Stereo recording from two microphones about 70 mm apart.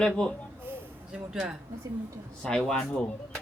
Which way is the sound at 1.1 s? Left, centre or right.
Centre.